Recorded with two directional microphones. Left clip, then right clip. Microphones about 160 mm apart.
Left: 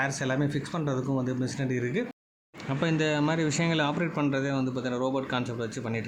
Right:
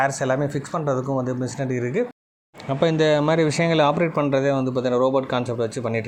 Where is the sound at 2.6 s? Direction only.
25° right (ahead or behind).